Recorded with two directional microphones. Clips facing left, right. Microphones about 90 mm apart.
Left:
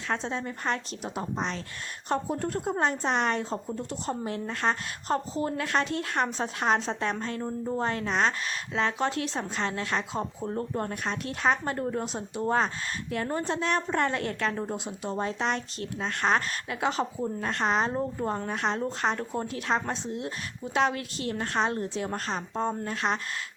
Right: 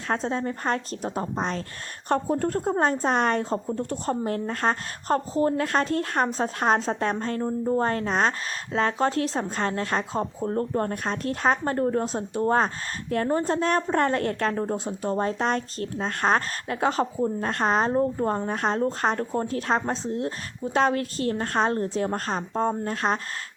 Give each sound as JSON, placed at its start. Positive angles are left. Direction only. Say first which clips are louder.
{"t": 0.1, "sound": "a woman's voice", "louder": "right 5 dB", "side_deg": -40}
{"t": 7.4, "sound": "a woman's voice", "louder": "right 8 dB", "side_deg": -20}
{"t": 7.8, "sound": "a woman's voice", "louder": "right 1 dB", "side_deg": -40}